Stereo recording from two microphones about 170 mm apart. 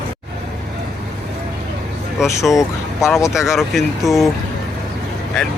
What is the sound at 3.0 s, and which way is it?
Speech, 15° left (ahead or behind).